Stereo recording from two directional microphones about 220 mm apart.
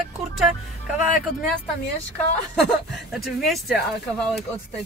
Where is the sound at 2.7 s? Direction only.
Centre (ahead or behind).